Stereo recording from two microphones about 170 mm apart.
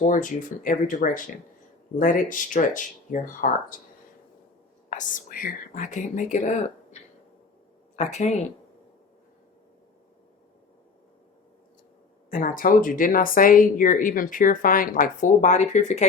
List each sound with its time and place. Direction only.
0.0 s speech: 50° left (ahead or behind)
4.9 s speech: 50° left (ahead or behind)
7.9 s speech: 45° left (ahead or behind)
12.3 s speech: 50° left (ahead or behind)